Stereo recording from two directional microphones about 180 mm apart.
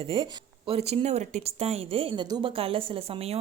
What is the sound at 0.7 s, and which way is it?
A woman's voice, 35° right (ahead or behind).